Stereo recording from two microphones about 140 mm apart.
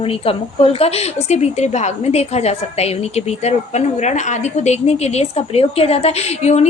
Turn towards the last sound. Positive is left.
turn(degrees=50)  # may be behind; listen again after turning